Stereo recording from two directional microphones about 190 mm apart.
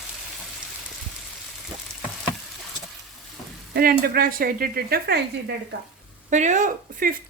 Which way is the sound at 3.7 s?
50° right (ahead or behind).